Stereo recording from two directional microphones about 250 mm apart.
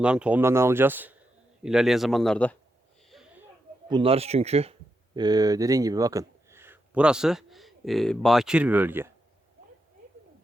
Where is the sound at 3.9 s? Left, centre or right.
Right.